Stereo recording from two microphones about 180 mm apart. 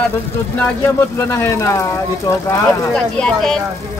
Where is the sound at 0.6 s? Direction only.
15° left (ahead or behind).